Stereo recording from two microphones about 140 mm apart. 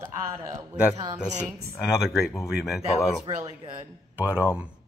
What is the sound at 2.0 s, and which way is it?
Speech, centre (ahead or behind).